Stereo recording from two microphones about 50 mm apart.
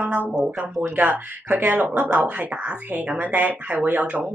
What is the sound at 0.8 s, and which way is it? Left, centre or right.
A woman's voice, right.